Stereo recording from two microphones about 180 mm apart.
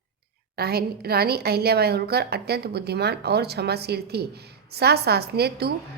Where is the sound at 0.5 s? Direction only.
60° right (ahead or behind).